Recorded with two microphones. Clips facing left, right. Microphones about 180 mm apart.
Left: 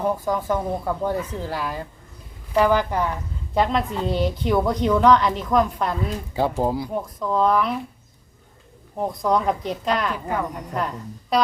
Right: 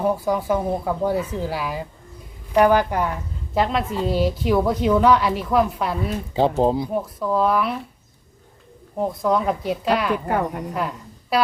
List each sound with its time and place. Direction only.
0.0 s a woman's voice: 10° right (ahead or behind)
6.3 s speech: 25° right (ahead or behind)
6.9 s speech: 5° right (ahead or behind)
9.0 s a woman's voice: centre (ahead or behind)
10.8 s music: 5° right (ahead or behind)